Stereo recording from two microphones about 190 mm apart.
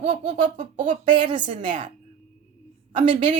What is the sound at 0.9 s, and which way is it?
Speech, 25° right (ahead or behind).